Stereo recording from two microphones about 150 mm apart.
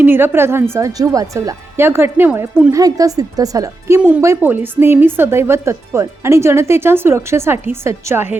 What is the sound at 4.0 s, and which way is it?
A woman's voice, 10° right (ahead or behind).